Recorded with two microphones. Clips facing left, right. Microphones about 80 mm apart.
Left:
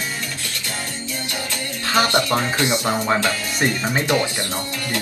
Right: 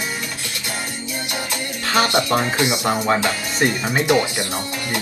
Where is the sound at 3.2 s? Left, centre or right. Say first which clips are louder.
Right 1 dB; centre.